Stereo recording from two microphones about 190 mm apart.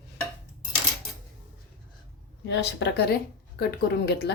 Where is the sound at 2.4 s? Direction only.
65° left (ahead or behind).